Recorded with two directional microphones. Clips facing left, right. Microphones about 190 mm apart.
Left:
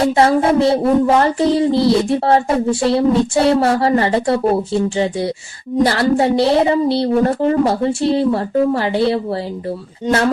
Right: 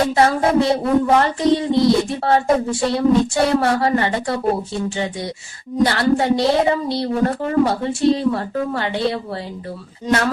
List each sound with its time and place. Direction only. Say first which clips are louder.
0.0 s a woman's voice: left 3 dB; 30° left (ahead or behind)